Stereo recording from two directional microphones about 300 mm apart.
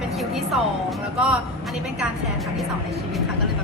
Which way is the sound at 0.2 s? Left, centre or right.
Centre.